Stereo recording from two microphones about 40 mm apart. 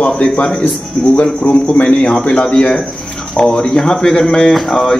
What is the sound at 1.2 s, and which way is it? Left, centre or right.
Speech, left.